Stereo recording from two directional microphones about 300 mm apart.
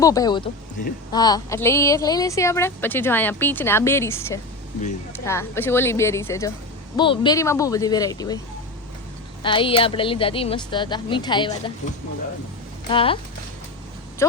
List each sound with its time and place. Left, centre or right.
0.0 s speech: centre
9.4 s speech: centre
12.9 s speech: centre
14.2 s speech: centre